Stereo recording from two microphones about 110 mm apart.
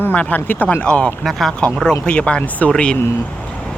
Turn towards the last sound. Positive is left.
turn(degrees=20)  # may be behind; listen again after turning